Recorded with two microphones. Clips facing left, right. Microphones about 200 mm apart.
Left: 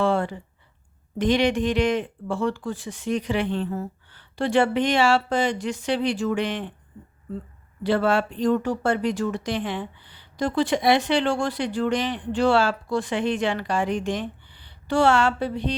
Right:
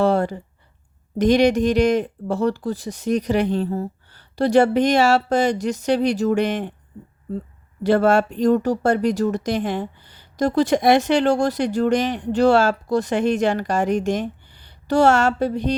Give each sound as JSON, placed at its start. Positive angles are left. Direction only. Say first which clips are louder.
{"t": 0.0, "sound": "a sound", "louder": "right 4 dB", "side_deg": -40}
{"t": 1.2, "sound": "speech", "louder": "right 5 dB", "side_deg": -40}
{"t": 7.9, "sound": "speech", "louder": "right 5 dB", "side_deg": -45}